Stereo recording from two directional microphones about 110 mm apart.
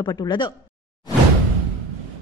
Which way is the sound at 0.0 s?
40° left (ahead or behind).